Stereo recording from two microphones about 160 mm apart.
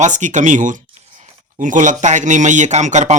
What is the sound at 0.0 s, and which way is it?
A man's voice, 50° right (ahead or behind).